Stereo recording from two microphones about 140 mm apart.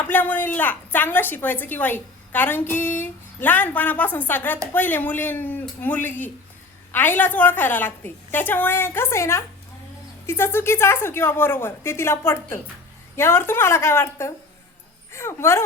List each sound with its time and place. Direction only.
0.0 s a woman's voice: 15° left (ahead or behind)